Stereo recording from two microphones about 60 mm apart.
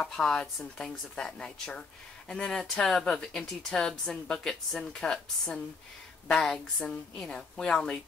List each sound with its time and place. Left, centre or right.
0.1 s speech: centre